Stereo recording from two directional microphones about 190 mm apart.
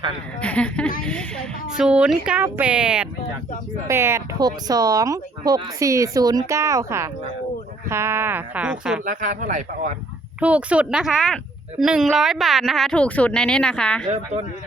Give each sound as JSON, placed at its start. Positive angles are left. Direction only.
{"t": 0.4, "sound": "speech", "side_deg": 5}
{"t": 9.0, "sound": "speech", "side_deg": -45}
{"t": 10.4, "sound": "speech", "side_deg": -5}